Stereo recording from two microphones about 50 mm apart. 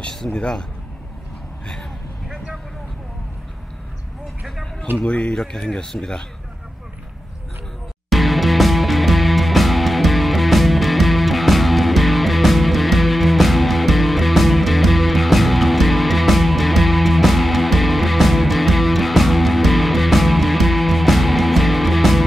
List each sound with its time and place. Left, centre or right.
0.3 s speech: centre
5.0 s speech: left
8.1 s music: centre